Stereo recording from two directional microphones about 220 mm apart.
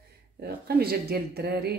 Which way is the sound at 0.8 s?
45° right (ahead or behind).